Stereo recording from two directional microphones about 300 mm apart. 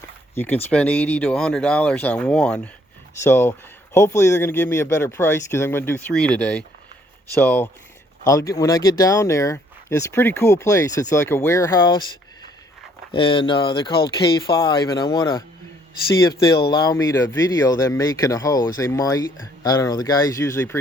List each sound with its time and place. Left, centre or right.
0.3 s speech: centre
16.7 s speech: centre